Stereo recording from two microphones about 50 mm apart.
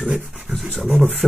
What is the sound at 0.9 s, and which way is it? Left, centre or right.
Speech, right.